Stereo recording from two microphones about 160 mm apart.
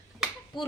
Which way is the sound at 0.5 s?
30° left (ahead or behind).